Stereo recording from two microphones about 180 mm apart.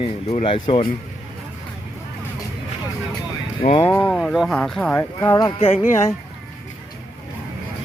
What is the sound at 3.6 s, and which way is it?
Speech, 30° left (ahead or behind).